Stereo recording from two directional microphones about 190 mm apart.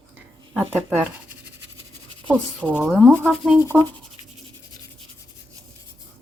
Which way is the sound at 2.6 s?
5° left (ahead or behind).